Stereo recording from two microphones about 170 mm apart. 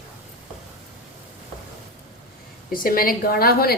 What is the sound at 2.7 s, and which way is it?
A woman's voice, 60° left (ahead or behind).